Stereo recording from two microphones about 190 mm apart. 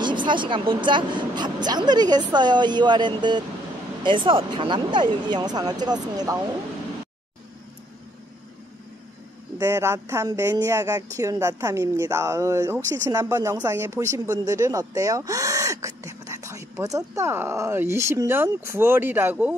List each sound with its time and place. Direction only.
0.0 s a woman's voice: 25° right (ahead or behind)
9.6 s speech: 15° right (ahead or behind)